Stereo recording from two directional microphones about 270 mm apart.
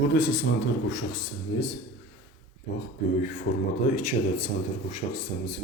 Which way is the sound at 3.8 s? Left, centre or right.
Left.